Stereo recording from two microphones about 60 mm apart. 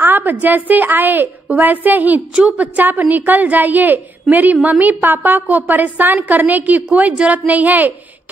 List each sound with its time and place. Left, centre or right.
0.0 s a woman's voice: right